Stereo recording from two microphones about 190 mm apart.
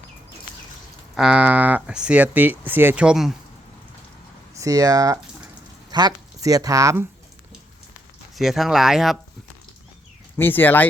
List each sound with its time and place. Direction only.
1.1 s speech: 5° right (ahead or behind)
4.5 s speech: 20° right (ahead or behind)
8.4 s speech: centre (ahead or behind)
10.3 s speech: 10° left (ahead or behind)